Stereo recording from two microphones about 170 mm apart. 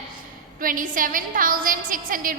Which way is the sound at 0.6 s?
55° right (ahead or behind).